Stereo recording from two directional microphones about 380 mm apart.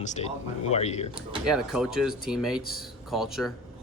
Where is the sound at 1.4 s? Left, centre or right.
Centre.